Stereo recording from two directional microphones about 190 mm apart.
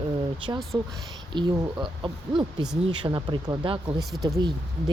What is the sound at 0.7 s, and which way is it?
Speech, 15° right (ahead or behind).